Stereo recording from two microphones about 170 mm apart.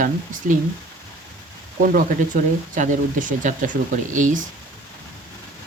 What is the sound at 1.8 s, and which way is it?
Speech, 50° right (ahead or behind).